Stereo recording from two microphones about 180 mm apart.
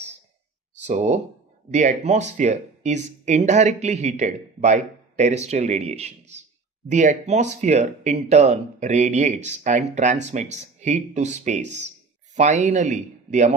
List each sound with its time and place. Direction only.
0.8 s speech: 40° right (ahead or behind)